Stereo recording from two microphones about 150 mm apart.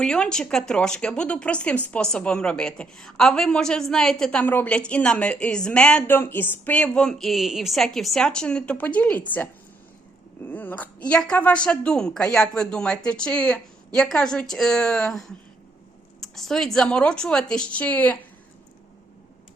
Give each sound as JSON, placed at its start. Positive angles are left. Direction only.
{"t": 0.0, "sound": "speech", "side_deg": 5}